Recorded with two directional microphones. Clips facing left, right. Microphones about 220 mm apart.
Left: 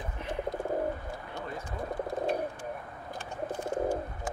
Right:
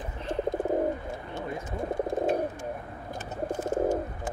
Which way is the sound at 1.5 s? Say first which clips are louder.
Right 5 dB; 25° right (ahead or behind).